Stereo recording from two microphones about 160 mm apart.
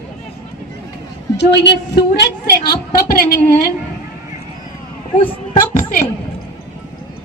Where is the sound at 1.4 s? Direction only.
90° left.